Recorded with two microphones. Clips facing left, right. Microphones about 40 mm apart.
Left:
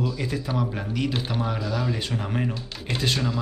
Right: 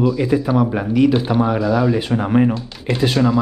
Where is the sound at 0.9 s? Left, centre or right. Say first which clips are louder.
Right 12 dB; centre.